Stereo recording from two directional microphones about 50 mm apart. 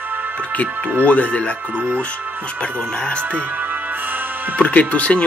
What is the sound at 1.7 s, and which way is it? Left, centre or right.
Speech, right.